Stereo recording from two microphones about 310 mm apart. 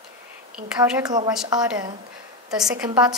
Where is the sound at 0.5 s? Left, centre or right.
Centre.